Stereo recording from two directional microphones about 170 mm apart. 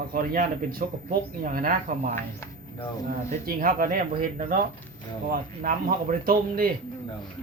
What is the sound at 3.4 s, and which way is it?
Speech, 55° right (ahead or behind).